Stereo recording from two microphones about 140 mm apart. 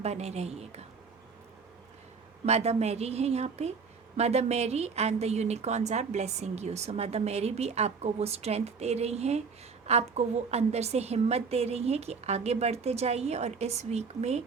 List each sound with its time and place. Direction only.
0.0 s a woman's voice: 50° right (ahead or behind)
2.5 s a woman's voice: 50° right (ahead or behind)